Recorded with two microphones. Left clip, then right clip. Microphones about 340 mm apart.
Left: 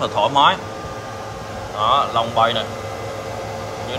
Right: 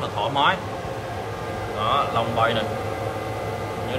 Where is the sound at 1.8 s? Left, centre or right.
Centre.